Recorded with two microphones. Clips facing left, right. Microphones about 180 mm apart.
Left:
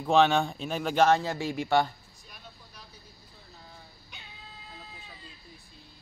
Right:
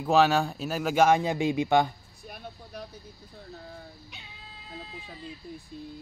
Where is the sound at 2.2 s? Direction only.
55° right (ahead or behind).